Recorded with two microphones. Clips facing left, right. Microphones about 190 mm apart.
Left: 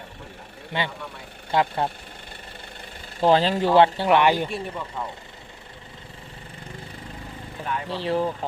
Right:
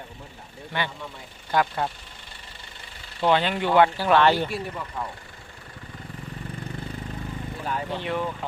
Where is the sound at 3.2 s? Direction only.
35° left (ahead or behind); by 4.5 s 15° left (ahead or behind).